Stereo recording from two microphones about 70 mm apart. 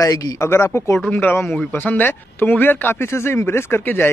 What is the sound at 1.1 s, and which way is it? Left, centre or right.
Speech, left.